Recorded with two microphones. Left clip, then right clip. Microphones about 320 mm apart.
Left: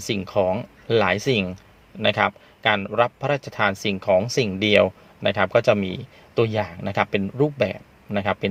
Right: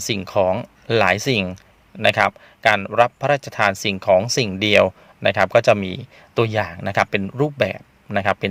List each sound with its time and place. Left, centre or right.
0.0 s a man's voice: right